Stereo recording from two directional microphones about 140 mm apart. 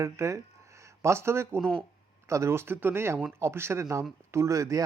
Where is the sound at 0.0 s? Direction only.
20° right (ahead or behind).